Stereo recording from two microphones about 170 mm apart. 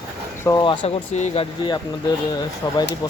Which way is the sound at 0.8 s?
40° left (ahead or behind).